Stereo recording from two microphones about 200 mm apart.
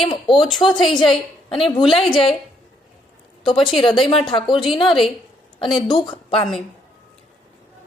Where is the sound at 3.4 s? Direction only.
25° left (ahead or behind).